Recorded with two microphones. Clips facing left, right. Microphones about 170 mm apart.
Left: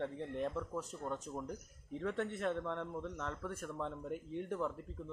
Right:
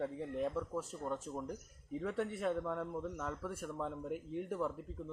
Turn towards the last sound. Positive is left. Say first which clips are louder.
# right 1 dB
turn(degrees=-5)  # may be behind; listen again after turning